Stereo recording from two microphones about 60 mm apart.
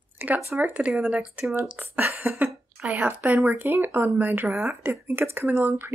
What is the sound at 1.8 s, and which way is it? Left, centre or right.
Speech, right.